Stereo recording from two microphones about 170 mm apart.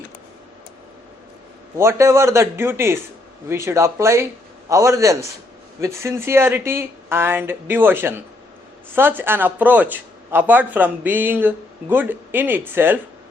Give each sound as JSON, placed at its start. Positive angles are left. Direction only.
{"t": 1.8, "sound": "speech", "side_deg": -15}